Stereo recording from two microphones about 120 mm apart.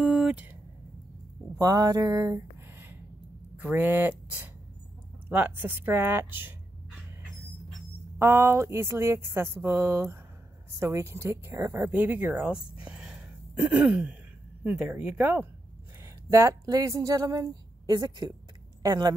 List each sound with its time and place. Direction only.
0.0 s a sound: 5° right (ahead or behind)
1.6 s speech: 30° right (ahead or behind)
3.5 s speech: 15° right (ahead or behind)
8.2 s speech: 20° right (ahead or behind)
12.8 s a sound: 10° right (ahead or behind)
14.6 s speech: 15° right (ahead or behind)
16.3 s a woman's voice: 25° right (ahead or behind)